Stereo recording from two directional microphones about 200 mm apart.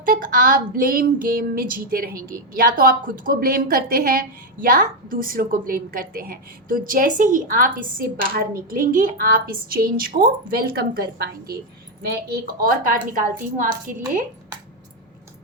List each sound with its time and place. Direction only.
0.0 s a woman's voice: 45° right (ahead or behind)